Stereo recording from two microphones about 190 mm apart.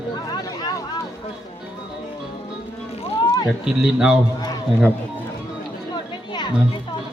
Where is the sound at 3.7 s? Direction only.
5° right (ahead or behind).